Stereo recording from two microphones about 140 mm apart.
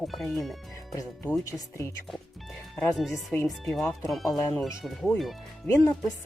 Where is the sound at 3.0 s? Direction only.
Centre (ahead or behind).